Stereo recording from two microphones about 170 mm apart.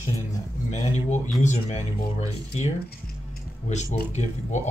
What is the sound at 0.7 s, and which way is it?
Speech, 40° left (ahead or behind).